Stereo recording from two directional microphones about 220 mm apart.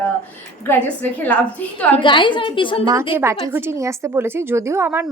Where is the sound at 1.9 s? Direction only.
20° left (ahead or behind).